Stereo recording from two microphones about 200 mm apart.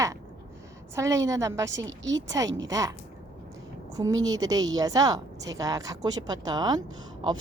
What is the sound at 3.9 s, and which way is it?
A woman's voice, 20° right (ahead or behind).